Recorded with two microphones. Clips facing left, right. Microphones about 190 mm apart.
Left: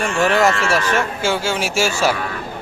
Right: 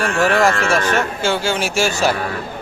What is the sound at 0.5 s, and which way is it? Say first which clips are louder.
Speech: right 1 dB; 45° right (ahead or behind).